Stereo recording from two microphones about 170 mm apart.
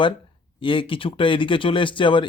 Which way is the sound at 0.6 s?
30° left (ahead or behind).